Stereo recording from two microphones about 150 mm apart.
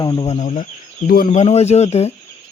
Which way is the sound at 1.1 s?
75° left (ahead or behind).